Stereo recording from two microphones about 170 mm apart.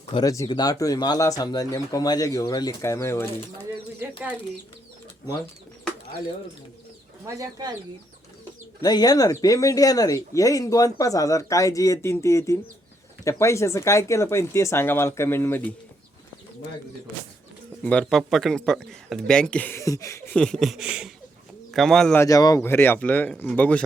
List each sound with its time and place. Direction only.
0.1 s speech: 20° left (ahead or behind)
7.3 s speech: 20° right (ahead or behind)
8.8 s speech: 20° left (ahead or behind)
17.8 s speech: 5° left (ahead or behind)
20.3 s speech: 5° left (ahead or behind)
22.2 s speech: 20° left (ahead or behind)